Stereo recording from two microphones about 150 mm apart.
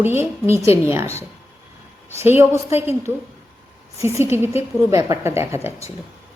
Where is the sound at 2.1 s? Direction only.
15° right (ahead or behind).